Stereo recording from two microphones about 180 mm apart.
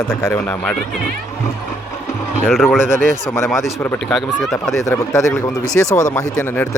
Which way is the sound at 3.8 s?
10° left (ahead or behind).